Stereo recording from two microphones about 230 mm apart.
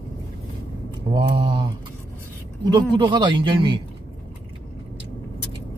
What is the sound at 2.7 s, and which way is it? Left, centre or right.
Speech, centre.